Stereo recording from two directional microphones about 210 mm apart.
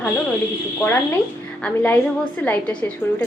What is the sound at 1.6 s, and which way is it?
A woman's voice, 5° left (ahead or behind).